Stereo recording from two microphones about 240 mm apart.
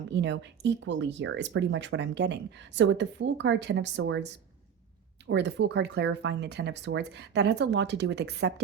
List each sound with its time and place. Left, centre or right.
0.1 s speech: right
5.3 s speech: right